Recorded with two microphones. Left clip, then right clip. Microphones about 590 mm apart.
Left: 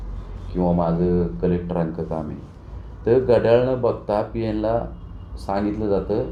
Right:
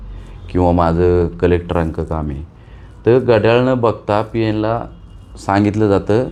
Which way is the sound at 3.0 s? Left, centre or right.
Right.